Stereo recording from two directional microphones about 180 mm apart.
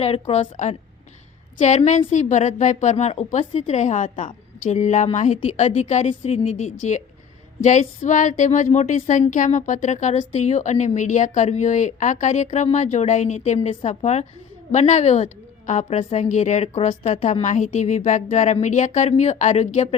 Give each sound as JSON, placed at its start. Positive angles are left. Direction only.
{"t": 0.0, "sound": "a woman's voice", "side_deg": 35}